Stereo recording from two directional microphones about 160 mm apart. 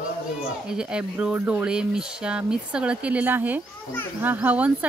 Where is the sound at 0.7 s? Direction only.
5° right (ahead or behind).